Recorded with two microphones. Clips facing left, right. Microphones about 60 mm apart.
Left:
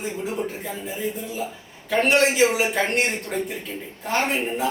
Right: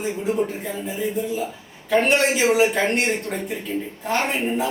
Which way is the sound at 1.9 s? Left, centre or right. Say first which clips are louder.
Right 1 dB; centre.